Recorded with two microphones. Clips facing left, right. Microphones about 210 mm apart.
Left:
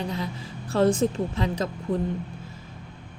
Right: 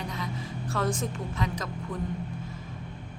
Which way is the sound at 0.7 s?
30° left (ahead or behind).